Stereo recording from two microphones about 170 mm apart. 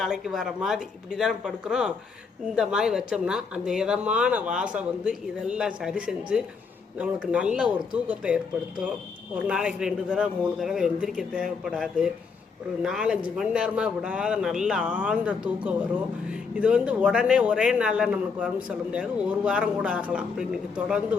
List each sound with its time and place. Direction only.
0.0 s a man's voice: centre (ahead or behind)
9.5 s a man's voice: 5° right (ahead or behind)